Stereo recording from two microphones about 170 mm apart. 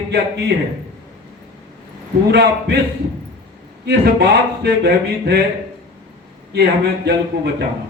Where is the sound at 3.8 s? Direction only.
75° right (ahead or behind).